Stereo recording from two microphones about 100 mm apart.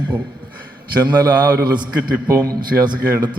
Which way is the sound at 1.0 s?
40° right (ahead or behind).